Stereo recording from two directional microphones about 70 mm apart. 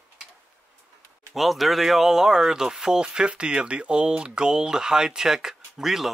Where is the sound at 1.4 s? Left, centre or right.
Centre.